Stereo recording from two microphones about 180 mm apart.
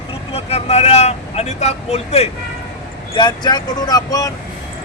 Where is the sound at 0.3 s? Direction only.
35° left (ahead or behind).